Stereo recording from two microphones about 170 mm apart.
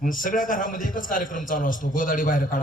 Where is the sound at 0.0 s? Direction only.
55° left (ahead or behind).